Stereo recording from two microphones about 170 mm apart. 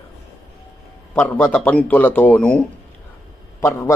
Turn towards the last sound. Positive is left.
turn(degrees=15)  # may be behind; listen again after turning